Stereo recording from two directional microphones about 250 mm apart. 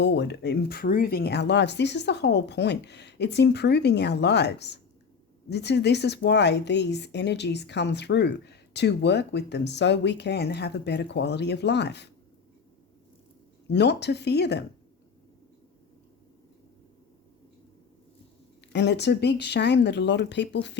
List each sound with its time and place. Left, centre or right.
0.0 s speech: left
13.7 s speech: left
18.7 s speech: left